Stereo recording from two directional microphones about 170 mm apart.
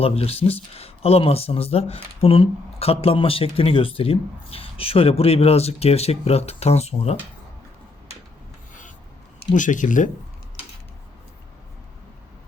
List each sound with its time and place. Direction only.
0.0 s speech: 35° left (ahead or behind)
9.4 s speech: 50° left (ahead or behind)